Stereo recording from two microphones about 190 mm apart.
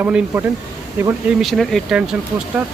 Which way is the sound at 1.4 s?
Centre (ahead or behind).